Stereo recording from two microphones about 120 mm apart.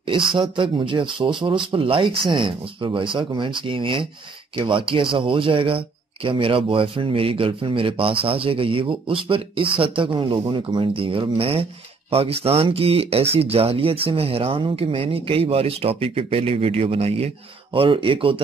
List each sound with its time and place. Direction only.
0.0 s speech: 45° right (ahead or behind)